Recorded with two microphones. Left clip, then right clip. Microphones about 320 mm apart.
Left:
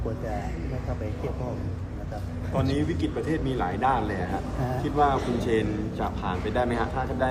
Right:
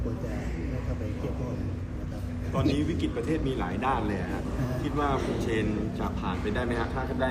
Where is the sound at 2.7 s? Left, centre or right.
Left.